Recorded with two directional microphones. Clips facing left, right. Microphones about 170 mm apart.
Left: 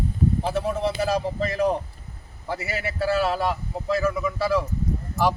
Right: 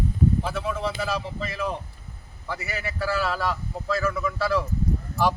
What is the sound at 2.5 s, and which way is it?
A man's voice, 30° left (ahead or behind).